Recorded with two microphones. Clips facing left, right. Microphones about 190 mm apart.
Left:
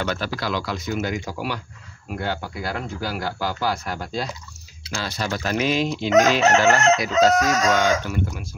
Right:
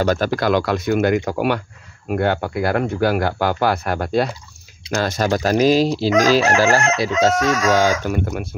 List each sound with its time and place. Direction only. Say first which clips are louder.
0.0 s speech: right 8 dB; 45° right (ahead or behind); by 4.3 s 60° right (ahead or behind)
4.9 s chicken: right 8 dB; 50° right (ahead or behind); by 7.9 s 30° right (ahead or behind)
8.0 s speech: right 5 dB; 55° right (ahead or behind)